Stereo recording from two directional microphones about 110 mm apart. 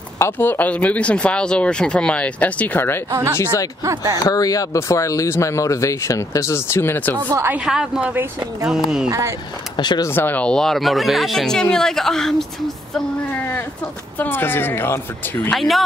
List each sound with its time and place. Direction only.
0.2 s speech: 20° left (ahead or behind)
3.8 s speech: 30° right (ahead or behind)
4.3 s speech: 35° left (ahead or behind); by 7.2 s 20° left (ahead or behind)
7.3 s speech: 20° right (ahead or behind)
7.6 s speech: 5° right (ahead or behind)
8.1 s speech: 20° right (ahead or behind)
8.6 s speech: 5° right (ahead or behind)
9.8 s speech: 40° left (ahead or behind)
10.0 s speech: 20° left (ahead or behind); by 13.0 s 5° left (ahead or behind)
14.1 s speech: 15° left (ahead or behind)
15.5 s speech: centre (ahead or behind)